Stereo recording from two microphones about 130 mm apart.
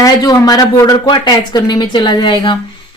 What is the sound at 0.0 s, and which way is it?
A man's voice, 30° left (ahead or behind).